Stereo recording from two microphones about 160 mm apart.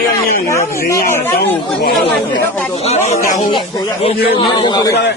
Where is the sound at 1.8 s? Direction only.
70° left (ahead or behind).